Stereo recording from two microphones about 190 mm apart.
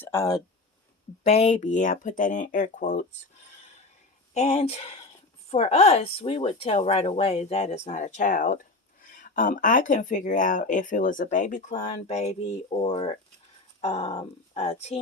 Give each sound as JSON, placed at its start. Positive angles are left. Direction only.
{"t": 0.0, "sound": "speech", "side_deg": 15}
{"t": 1.2, "sound": "speech", "side_deg": 35}
{"t": 4.4, "sound": "speech", "side_deg": 35}